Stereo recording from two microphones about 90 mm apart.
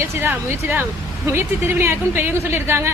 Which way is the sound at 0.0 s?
25° right (ahead or behind).